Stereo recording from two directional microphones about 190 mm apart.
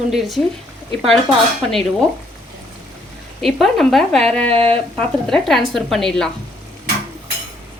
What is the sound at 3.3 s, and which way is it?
A woman's voice, centre (ahead or behind).